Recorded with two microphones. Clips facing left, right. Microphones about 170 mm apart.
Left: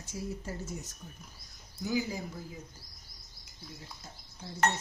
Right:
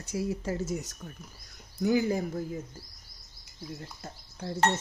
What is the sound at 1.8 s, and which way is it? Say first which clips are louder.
Speech: right 7 dB; 60° right (ahead or behind).